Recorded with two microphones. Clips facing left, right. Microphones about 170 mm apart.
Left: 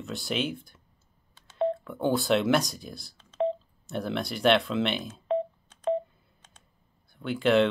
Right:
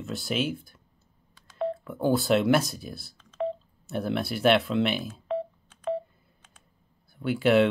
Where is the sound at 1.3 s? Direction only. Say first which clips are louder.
Left 3 dB; 25° left (ahead or behind).